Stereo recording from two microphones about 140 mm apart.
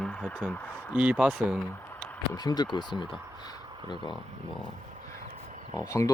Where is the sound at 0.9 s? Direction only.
5° right (ahead or behind).